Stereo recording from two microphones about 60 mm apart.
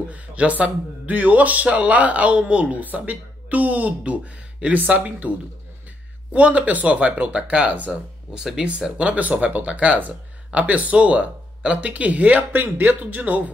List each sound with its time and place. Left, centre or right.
0.1 s speech: right
6.3 s speech: right
8.4 s speech: centre
8.6 s speech: centre